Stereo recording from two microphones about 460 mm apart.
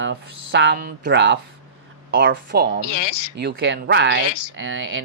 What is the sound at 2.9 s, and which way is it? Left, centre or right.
Speech, left.